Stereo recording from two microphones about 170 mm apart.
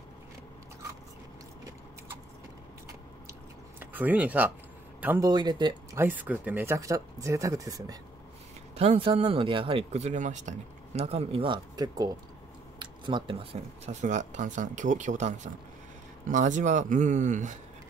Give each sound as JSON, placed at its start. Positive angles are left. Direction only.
{"t": 3.8, "sound": "speech", "side_deg": -10}
{"t": 5.3, "sound": "speech", "side_deg": -25}
{"t": 5.9, "sound": "speech", "side_deg": -10}
{"t": 8.7, "sound": "speech", "side_deg": -35}